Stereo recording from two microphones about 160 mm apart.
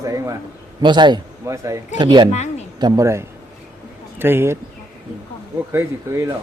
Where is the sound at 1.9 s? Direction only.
30° right (ahead or behind).